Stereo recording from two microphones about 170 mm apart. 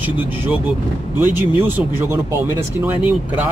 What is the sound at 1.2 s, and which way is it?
Speech, 10° right (ahead or behind).